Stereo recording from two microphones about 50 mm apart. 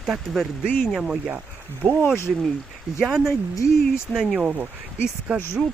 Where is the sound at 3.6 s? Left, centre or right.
Left.